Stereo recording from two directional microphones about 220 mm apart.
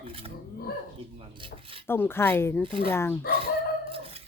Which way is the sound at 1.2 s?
25° right (ahead or behind).